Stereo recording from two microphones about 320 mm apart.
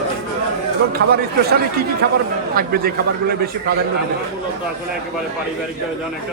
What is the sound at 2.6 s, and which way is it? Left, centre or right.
A man's voice, right.